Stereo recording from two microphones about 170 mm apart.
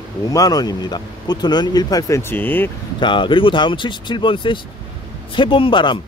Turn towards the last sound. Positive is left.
turn(degrees=30)  # may be behind; listen again after turning